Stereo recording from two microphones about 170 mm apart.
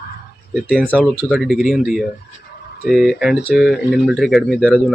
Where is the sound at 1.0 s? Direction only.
Centre (ahead or behind).